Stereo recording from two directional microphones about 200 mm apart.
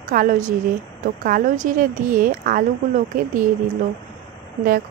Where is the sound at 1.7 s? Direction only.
45° right (ahead or behind).